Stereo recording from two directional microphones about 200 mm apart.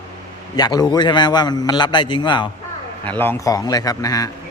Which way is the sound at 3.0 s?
10° left (ahead or behind).